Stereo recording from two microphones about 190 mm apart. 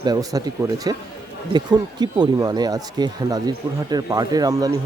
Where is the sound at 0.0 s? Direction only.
20° right (ahead or behind).